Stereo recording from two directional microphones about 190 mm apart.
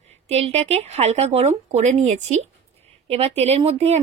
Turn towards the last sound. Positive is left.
turn(degrees=-35)  # may be behind; listen again after turning